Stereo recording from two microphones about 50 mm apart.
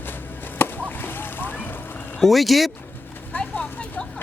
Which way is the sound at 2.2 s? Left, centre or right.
Centre.